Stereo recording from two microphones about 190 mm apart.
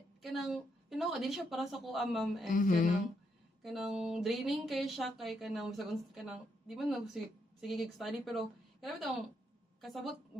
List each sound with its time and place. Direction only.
0.2 s speech: centre (ahead or behind)
2.5 s speech: 45° left (ahead or behind)
3.6 s speech: centre (ahead or behind)